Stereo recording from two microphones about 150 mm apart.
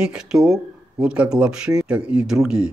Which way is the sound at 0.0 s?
5° right (ahead or behind).